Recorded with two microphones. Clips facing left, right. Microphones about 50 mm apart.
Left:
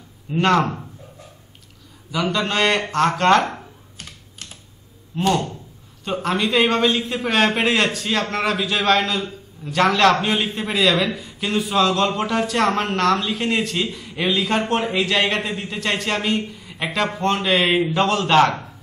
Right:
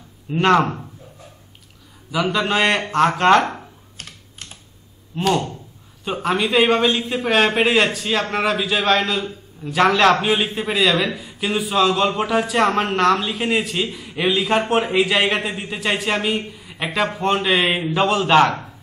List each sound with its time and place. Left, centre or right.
0.3 s speech: centre
2.0 s a man's voice: centre
5.3 s a man's voice: centre